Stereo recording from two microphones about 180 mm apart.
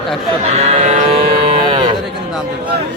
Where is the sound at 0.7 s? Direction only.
40° right (ahead or behind).